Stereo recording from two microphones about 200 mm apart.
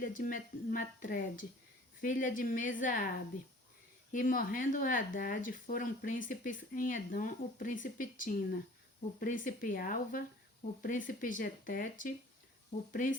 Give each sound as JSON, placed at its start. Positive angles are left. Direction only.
{"t": 0.0, "sound": "speech", "side_deg": 45}
{"t": 4.1, "sound": "speech", "side_deg": 40}